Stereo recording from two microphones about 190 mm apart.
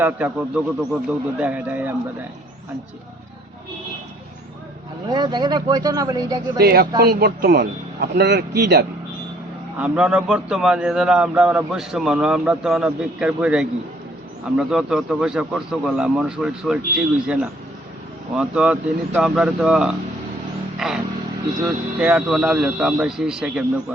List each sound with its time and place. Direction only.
0.0 s speech: 10° right (ahead or behind)
5.0 s speech: 25° right (ahead or behind)
6.6 s a man's voice: 55° right (ahead or behind)
9.7 s a man's voice: 5° right (ahead or behind)
14.7 s a man's voice: centre (ahead or behind)